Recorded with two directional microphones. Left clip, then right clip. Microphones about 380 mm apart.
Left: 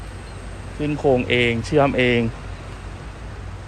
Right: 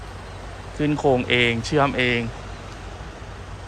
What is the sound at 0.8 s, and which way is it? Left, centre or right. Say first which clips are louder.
Speech: left 1 dB; centre.